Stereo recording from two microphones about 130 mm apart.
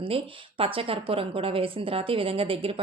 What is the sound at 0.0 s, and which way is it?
A woman's voice, 45° right (ahead or behind).